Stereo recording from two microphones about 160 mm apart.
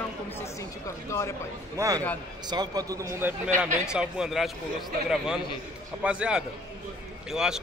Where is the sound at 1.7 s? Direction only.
20° right (ahead or behind).